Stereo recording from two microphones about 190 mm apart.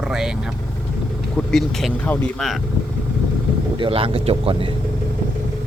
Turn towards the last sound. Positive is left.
turn(degrees=-30)  # may be behind; listen again after turning